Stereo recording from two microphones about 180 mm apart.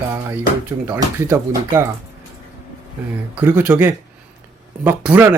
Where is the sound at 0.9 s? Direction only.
15° right (ahead or behind).